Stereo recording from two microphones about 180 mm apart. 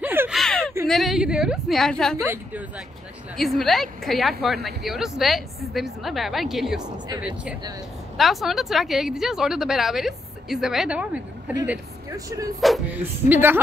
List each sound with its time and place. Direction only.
0.0 s a sound: 10° right (ahead or behind)
0.3 s a sound: centre (ahead or behind)
0.8 s speech: centre (ahead or behind)
2.2 s speech: 15° right (ahead or behind)
3.3 s speech: centre (ahead or behind)
12.1 s speech: 20° right (ahead or behind)
12.5 s speech: centre (ahead or behind)